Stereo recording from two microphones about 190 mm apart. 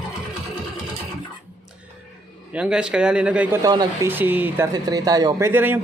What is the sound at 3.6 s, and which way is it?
Speech, 20° right (ahead or behind).